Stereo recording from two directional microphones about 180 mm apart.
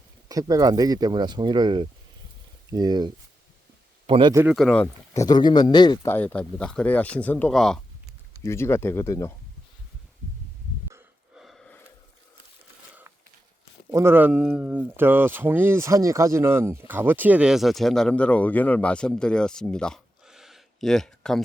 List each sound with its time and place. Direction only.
0.3 s speech: 20° right (ahead or behind)
4.5 s speech: 5° left (ahead or behind); by 6.1 s 25° left (ahead or behind)
6.1 s speech: 10° left (ahead or behind)
8.4 s speech: 15° left (ahead or behind)
11.3 s a sound: centre (ahead or behind)
13.9 s speech: 15° right (ahead or behind); by 21.4 s centre (ahead or behind)